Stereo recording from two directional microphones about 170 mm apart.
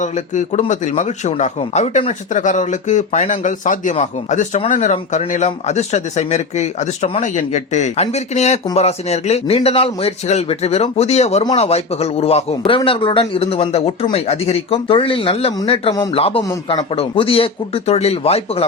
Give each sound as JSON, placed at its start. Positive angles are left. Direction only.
{"t": 0.0, "sound": "a man's voice", "side_deg": 45}